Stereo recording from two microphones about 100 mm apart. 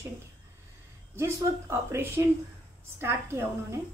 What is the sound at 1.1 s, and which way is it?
Speech, 25° right (ahead or behind).